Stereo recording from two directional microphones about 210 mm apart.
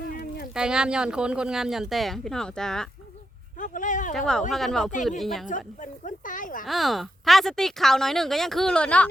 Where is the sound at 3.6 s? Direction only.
40° left (ahead or behind).